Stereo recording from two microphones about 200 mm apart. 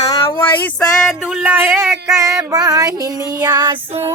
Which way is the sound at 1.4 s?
10° right (ahead or behind).